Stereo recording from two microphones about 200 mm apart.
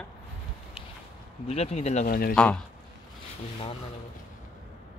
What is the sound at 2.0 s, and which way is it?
Speech, 50° left (ahead or behind).